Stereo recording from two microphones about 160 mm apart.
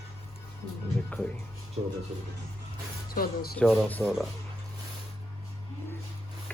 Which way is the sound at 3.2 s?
70° left (ahead or behind).